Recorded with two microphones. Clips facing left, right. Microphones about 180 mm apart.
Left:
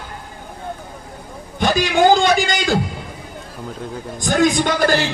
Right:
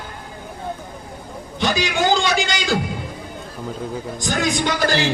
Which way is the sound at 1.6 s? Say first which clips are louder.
Left 5 dB; 55° left (ahead or behind).